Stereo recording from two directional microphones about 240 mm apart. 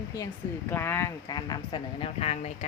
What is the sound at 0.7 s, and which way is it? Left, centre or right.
Speech, centre.